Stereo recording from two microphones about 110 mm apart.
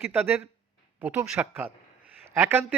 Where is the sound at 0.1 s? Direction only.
15° right (ahead or behind).